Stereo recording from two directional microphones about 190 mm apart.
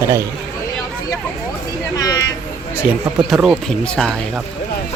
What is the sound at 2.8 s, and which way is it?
Speech, 5° right (ahead or behind).